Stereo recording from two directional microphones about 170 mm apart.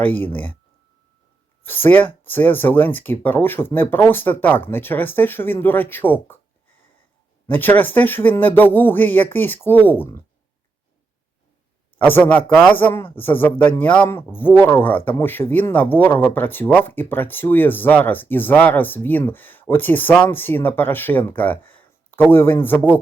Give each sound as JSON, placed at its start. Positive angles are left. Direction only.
{"t": 0.0, "sound": "speech", "side_deg": 10}
{"t": 1.6, "sound": "speech", "side_deg": 10}
{"t": 7.5, "sound": "speech", "side_deg": 10}
{"t": 11.9, "sound": "speech", "side_deg": 10}